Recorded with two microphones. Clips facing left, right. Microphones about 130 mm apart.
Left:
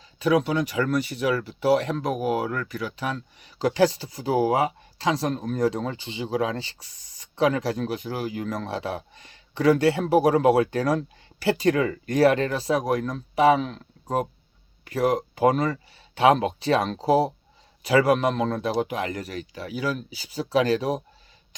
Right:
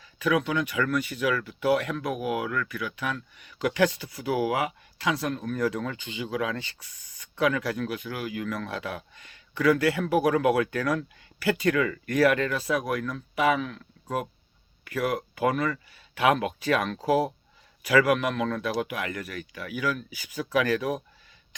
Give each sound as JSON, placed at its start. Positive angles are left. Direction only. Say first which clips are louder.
{"t": 0.0, "sound": "speech", "louder": "left 4 dB", "side_deg": 35}